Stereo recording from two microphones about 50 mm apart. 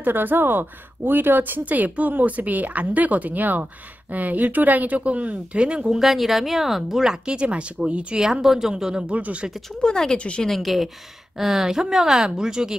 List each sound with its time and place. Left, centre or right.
0.0 s a woman's voice: right
5.9 s speech: centre; by 8.2 s right
8.2 s speech: centre
9.0 s speech: right
9.8 s speech: centre
10.4 s speech: centre